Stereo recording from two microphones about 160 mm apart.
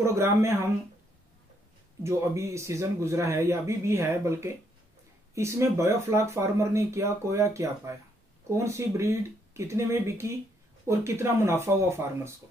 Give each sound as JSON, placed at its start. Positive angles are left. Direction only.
{"t": 0.0, "sound": "speech", "side_deg": -15}
{"t": 2.0, "sound": "speech", "side_deg": -15}